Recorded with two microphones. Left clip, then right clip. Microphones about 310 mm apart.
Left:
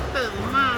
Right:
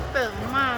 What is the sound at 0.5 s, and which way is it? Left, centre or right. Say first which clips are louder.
Vehicle: left 3 dB; centre.